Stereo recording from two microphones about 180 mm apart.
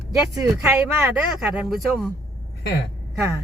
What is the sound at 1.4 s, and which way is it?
Speech, centre (ahead or behind).